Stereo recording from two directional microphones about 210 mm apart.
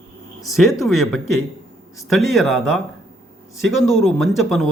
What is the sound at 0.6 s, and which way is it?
Speech, centre (ahead or behind).